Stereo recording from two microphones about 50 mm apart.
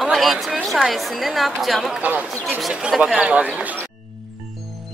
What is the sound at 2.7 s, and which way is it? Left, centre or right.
Speech, centre.